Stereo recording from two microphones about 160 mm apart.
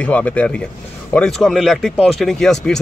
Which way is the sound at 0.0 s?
10° left (ahead or behind).